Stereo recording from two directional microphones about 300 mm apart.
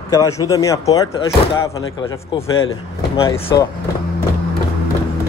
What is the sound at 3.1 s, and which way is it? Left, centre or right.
Speech, centre.